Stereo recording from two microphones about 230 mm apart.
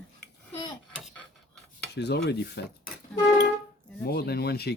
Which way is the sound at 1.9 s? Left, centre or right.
Left.